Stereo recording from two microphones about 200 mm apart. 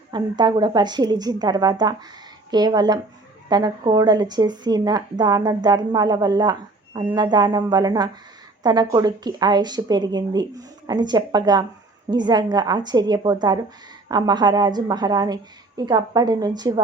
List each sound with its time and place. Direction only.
0.1 s speech: 20° right (ahead or behind)